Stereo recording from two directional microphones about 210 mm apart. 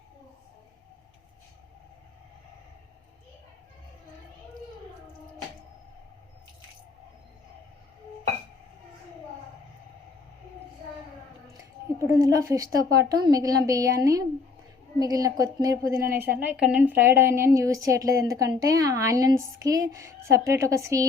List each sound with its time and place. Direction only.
11.5 s a woman's voice: 15° right (ahead or behind)